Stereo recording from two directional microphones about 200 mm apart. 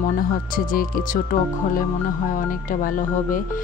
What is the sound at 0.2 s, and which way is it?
Speech, 45° left (ahead or behind).